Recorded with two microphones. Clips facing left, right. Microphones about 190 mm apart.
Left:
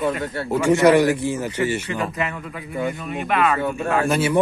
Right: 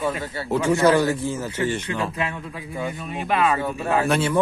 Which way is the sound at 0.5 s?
15° left (ahead or behind).